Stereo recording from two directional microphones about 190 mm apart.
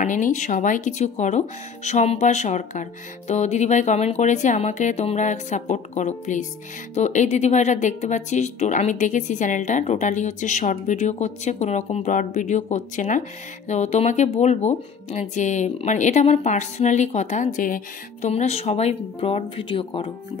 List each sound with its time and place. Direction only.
0.0 s speech: 40° left (ahead or behind)
18.3 s speech: 35° left (ahead or behind)